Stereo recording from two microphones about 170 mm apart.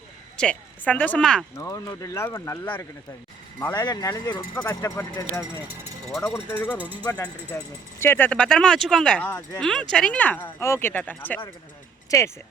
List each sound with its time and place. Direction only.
0.3 s a woman's voice: 5° left (ahead or behind)
1.5 s speech: 15° left (ahead or behind)
3.8 s speech: 20° left (ahead or behind)
6.1 s a woman's voice: centre (ahead or behind)
6.3 s speech: 10° left (ahead or behind)
6.7 s speech: 10° right (ahead or behind)
7.0 s speech: 10° left (ahead or behind)